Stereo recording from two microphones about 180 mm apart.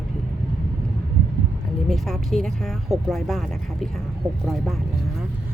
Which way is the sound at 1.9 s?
Centre (ahead or behind).